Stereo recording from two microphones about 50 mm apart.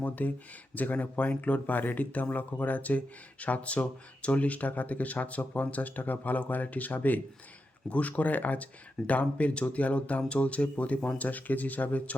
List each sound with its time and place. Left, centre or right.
0.0 s speech: left